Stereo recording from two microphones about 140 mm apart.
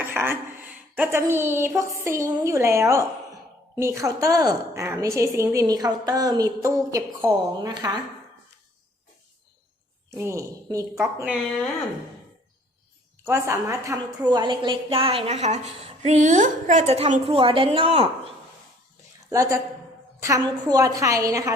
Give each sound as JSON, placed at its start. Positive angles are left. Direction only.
{"t": 0.0, "sound": "a woman's voice", "side_deg": -15}
{"t": 10.2, "sound": "a woman's voice", "side_deg": -20}
{"t": 13.2, "sound": "a woman's voice", "side_deg": -20}
{"t": 19.3, "sound": "a woman's voice", "side_deg": -25}